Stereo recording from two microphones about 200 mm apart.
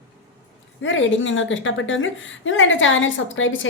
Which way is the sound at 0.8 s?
70° left (ahead or behind).